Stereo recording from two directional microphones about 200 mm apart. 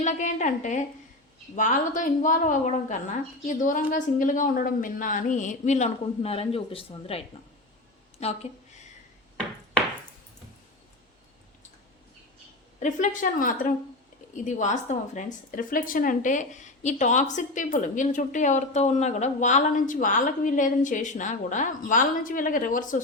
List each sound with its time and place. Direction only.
0.0 s a woman's voice: 35° left (ahead or behind)
8.2 s a woman's voice: 30° left (ahead or behind)
12.8 s a woman's voice: 40° left (ahead or behind)